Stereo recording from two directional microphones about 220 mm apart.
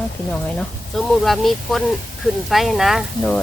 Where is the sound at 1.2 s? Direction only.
Centre (ahead or behind).